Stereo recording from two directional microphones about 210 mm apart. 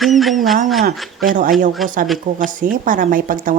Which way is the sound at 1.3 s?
40° right (ahead or behind).